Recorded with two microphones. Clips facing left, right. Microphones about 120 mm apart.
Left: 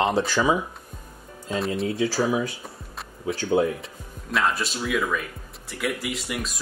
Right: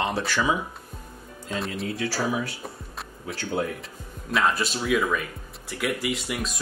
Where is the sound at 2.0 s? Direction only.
15° left (ahead or behind).